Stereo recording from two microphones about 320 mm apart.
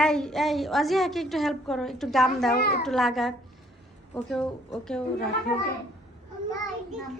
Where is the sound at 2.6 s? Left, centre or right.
Left.